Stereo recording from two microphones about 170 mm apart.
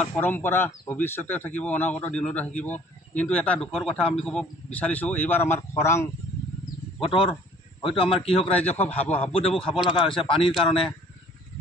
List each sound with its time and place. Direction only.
0.0 s speech: 10° left (ahead or behind)
7.0 s speech: 30° left (ahead or behind)